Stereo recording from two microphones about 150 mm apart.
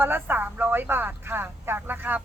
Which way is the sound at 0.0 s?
15° right (ahead or behind).